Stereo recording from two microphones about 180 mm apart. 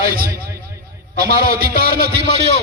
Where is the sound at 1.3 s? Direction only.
55° right (ahead or behind).